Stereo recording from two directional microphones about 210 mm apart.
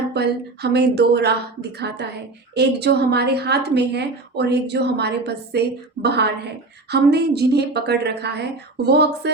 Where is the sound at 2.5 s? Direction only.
50° right (ahead or behind).